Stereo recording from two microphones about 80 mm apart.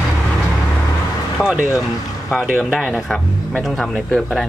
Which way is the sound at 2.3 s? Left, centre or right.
Centre.